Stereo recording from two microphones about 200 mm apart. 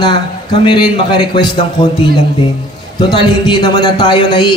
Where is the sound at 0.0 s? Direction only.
25° left (ahead or behind).